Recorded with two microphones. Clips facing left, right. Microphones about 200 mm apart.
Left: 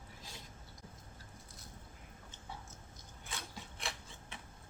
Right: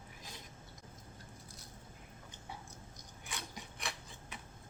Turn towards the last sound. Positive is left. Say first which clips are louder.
# right 1 dB
turn(degrees=-15)  # may be behind; listen again after turning